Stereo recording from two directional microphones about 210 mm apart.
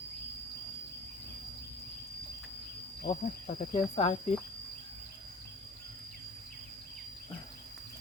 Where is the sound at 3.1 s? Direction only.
30° left (ahead or behind).